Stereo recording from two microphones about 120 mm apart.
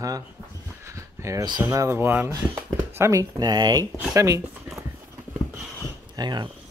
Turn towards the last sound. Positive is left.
turn(degrees=-35)  # may be behind; listen again after turning